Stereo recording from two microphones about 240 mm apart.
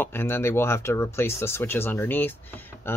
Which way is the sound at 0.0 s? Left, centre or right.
Centre.